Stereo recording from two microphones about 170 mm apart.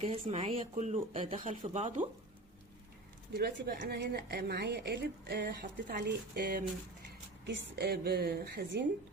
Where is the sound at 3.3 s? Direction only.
80° right.